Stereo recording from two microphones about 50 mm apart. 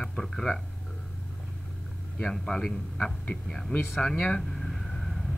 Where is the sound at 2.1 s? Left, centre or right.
Centre.